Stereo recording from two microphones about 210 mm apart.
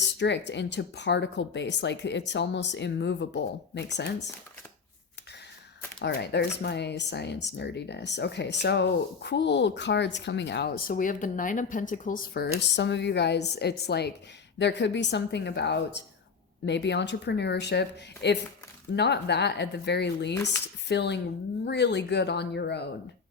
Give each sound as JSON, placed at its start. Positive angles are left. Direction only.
{"t": 0.2, "sound": "speech", "side_deg": 55}
{"t": 6.0, "sound": "speech", "side_deg": 50}